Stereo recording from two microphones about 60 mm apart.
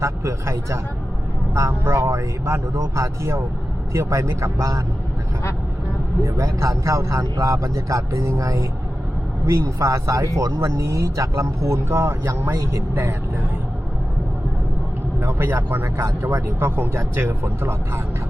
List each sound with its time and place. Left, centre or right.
0.0 s a man's voice: right
6.2 s speech: right
15.2 s speech: right